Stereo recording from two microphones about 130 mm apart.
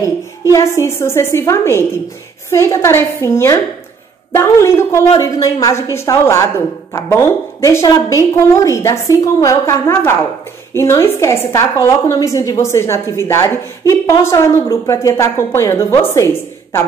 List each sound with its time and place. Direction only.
0.0 s a woman's voice: 25° left (ahead or behind)